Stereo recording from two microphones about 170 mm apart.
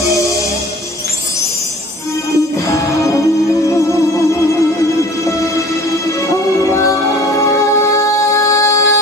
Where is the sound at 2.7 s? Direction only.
20° left (ahead or behind).